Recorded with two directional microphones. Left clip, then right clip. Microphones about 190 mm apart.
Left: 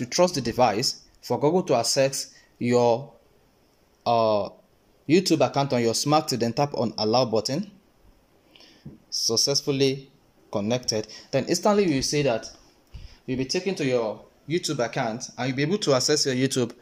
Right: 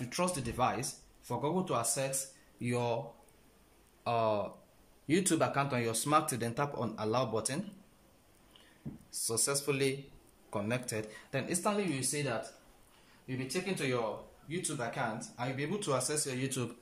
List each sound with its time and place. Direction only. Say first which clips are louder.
0.0 s speech: left 13 dB; 35° left (ahead or behind)
4.0 s speech: left 10 dB; 25° left (ahead or behind)
9.2 s a man's voice: left 11 dB; 20° left (ahead or behind)
11.4 s speech: left 12 dB; 45° left (ahead or behind)
13.3 s speech: left 10 dB; 45° left (ahead or behind)